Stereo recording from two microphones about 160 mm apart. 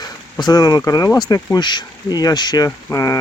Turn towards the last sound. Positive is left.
turn(degrees=20)  # may be behind; listen again after turning